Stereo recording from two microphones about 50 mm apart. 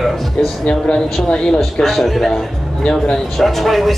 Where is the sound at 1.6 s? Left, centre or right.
Centre.